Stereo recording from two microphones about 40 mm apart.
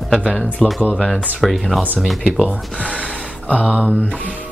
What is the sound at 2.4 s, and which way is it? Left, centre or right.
Speech, right.